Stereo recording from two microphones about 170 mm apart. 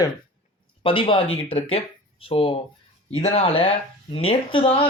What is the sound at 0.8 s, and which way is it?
Speech, 30° left (ahead or behind).